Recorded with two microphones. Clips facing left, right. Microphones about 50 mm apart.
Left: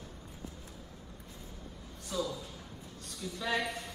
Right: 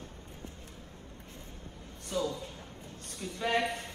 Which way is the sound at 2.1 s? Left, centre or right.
Right.